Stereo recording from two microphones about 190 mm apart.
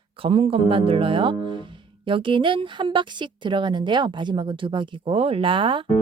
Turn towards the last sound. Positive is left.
turn(degrees=-25)  # may be behind; listen again after turning